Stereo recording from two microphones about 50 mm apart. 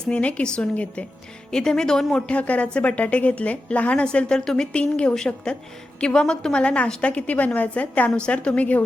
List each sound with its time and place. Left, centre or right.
0.1 s a woman's voice: left
2.3 s a woman's voice: left